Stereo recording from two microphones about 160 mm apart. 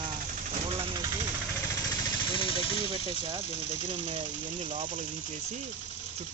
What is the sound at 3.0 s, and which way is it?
Speech, 35° right (ahead or behind).